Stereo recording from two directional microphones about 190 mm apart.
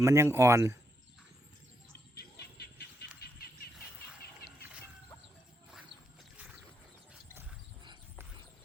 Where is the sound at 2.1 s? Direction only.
55° left (ahead or behind).